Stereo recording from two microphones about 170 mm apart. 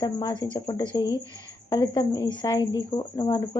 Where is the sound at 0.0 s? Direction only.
25° left (ahead or behind).